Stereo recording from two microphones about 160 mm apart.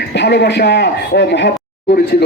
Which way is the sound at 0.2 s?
90° left.